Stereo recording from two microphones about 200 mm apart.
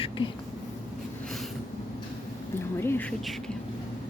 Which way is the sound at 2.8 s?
10° left (ahead or behind).